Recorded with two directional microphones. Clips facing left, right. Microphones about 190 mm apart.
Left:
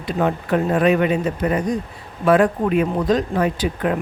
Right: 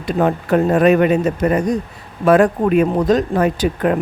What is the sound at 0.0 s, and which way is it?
Speech, 45° right (ahead or behind).